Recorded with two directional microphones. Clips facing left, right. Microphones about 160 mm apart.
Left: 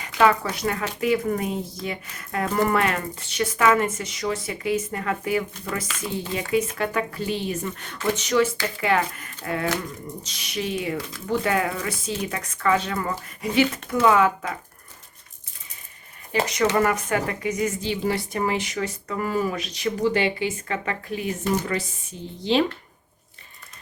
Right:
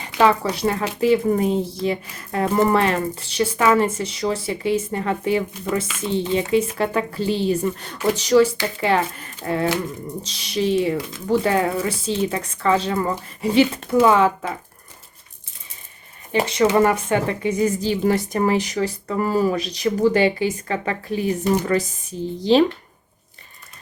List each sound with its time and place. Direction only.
0.0 s a sound: 30° right (ahead or behind)
0.5 s speech: 30° right (ahead or behind)
16.3 s speech: 30° right (ahead or behind)